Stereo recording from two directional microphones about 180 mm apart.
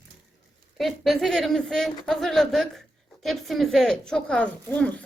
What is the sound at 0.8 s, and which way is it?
A woman's voice, centre (ahead or behind).